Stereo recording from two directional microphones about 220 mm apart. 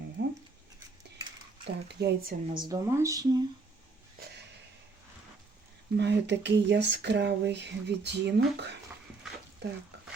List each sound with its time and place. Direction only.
1.6 s speech: 50° right (ahead or behind)
2.6 s speech: 15° right (ahead or behind)
6.0 s speech: 50° right (ahead or behind)